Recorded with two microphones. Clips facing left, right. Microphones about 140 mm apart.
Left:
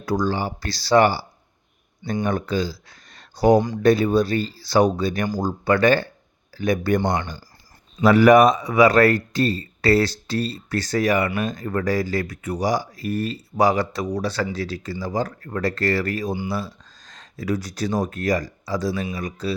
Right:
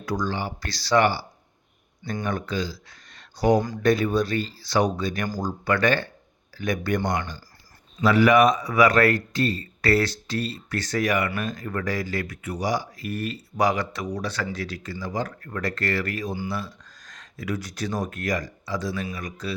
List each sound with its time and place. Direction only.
0.0 s speech: 35° left (ahead or behind)
2.2 s speech: 35° left (ahead or behind)
3.2 s a sound: 35° left (ahead or behind)
3.8 s speech: 30° left (ahead or behind)
8.0 s speech: 40° left (ahead or behind)
8.5 s speech: 25° left (ahead or behind)